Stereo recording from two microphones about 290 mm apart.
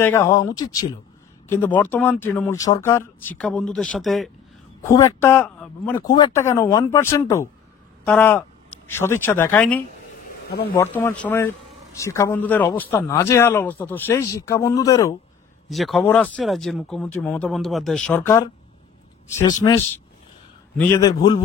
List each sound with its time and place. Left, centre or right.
0.0 s speech: centre
10.5 s speech: left
10.8 s speech: centre
15.7 s speech: centre